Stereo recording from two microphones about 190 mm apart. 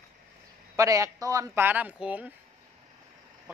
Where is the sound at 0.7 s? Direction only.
15° right (ahead or behind).